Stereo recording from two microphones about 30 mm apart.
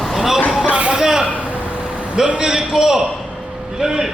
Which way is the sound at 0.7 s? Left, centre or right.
Right.